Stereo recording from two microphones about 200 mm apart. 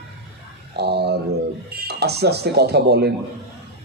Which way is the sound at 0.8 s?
55° right (ahead or behind).